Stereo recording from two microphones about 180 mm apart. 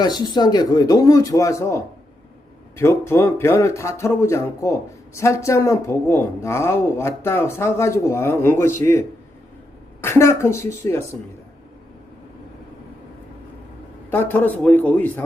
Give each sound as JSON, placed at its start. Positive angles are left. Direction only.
{"t": 0.0, "sound": "speech", "side_deg": 25}
{"t": 14.1, "sound": "speech", "side_deg": 10}